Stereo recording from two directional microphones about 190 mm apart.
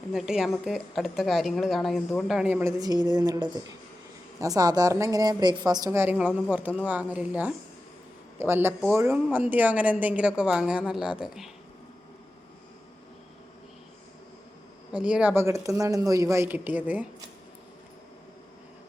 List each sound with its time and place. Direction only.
0.1 s a woman's voice: 5° right (ahead or behind)
14.9 s a woman's voice: 5° right (ahead or behind)